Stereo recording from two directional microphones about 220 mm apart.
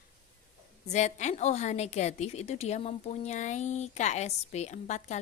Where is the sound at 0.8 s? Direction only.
30° left (ahead or behind).